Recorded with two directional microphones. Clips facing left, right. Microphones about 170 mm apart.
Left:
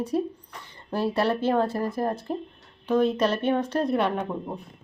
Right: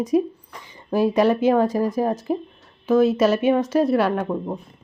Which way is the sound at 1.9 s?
90° right.